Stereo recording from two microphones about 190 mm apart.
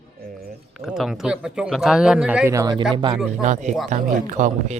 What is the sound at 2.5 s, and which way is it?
Speech, 20° right (ahead or behind).